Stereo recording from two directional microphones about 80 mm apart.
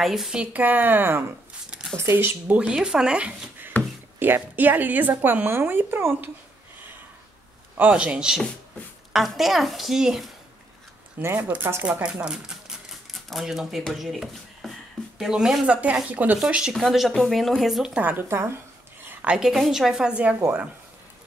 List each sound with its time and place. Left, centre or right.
0.0 s speech: centre; by 2.6 s right
2.6 s a woman's voice: centre
4.2 s speech: right
7.7 s a woman's voice: centre
11.1 s speech: right
12.0 s a woman's voice: centre
15.7 s a woman's voice: centre
16.7 s a woman's voice: centre
17.9 s speech: right
19.0 s a woman's voice: centre